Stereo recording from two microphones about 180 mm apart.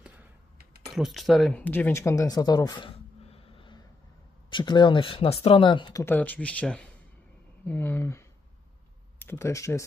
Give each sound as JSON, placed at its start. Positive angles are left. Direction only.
{"t": 0.9, "sound": "speech", "side_deg": 0}
{"t": 6.0, "sound": "speech", "side_deg": 10}